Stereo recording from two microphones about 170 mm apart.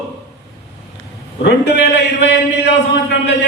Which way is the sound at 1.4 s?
90° left.